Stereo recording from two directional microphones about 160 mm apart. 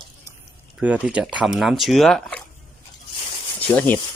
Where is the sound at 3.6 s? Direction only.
10° left (ahead or behind).